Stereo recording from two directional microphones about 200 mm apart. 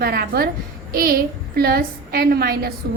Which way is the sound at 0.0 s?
50° right (ahead or behind).